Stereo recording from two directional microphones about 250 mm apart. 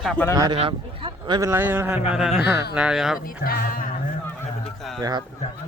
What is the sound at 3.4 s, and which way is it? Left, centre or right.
Speech, left.